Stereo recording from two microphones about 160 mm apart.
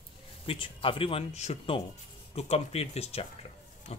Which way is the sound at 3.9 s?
40° left (ahead or behind).